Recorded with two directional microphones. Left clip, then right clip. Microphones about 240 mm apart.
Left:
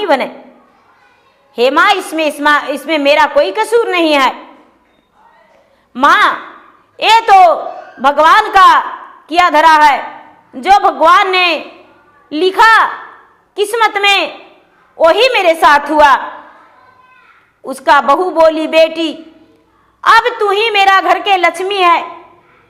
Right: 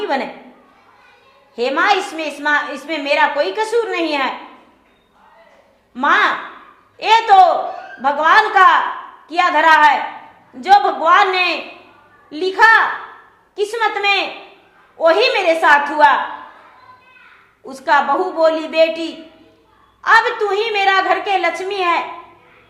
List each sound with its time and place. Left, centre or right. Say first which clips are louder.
0.0 s a woman's voice: left 8 dB; left
1.5 s a woman's voice: left 6 dB; left
5.9 s a woman's voice: left 6 dB; left
17.7 s a woman's voice: left 6 dB; left